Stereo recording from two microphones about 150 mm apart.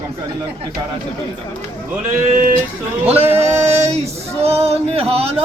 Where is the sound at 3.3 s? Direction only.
15° right (ahead or behind).